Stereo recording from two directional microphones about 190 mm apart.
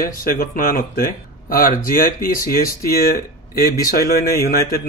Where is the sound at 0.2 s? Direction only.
50° left (ahead or behind).